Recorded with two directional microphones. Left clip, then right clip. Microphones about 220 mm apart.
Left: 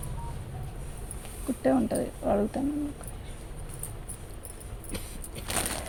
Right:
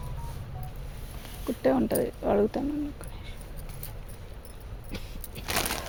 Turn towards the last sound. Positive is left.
turn(degrees=-25)  # may be behind; listen again after turning